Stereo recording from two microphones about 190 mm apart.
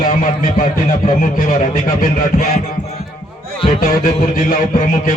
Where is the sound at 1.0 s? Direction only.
45° left (ahead or behind).